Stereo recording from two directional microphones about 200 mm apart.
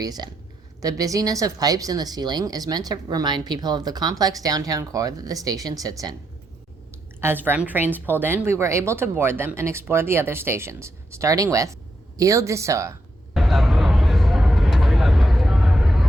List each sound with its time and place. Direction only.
0.0 s a woman's voice: 20° right (ahead or behind)
7.2 s a woman's voice: 10° right (ahead or behind)
13.3 s vehicle: centre (ahead or behind)